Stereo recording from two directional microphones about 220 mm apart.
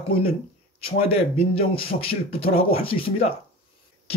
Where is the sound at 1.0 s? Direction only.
25° left (ahead or behind).